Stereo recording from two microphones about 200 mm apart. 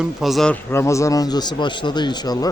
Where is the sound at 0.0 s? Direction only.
Centre (ahead or behind).